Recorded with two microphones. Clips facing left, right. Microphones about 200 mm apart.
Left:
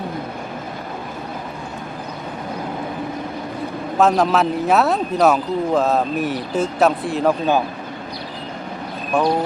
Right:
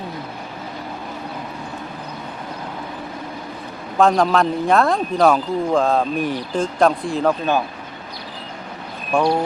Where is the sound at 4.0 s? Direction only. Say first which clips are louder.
Even; 5° left (ahead or behind).